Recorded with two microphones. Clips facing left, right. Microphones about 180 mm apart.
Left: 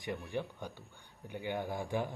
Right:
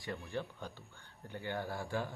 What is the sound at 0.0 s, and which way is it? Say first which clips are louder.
Speech: left 3 dB; 15° left (ahead or behind).